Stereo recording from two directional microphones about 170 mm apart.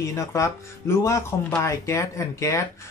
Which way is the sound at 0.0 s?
15° left (ahead or behind).